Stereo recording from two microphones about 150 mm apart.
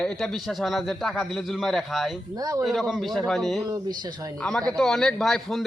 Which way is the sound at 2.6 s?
Centre (ahead or behind).